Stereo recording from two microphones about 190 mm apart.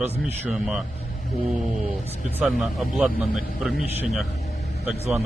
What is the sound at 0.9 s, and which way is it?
Vehicle, 50° left (ahead or behind).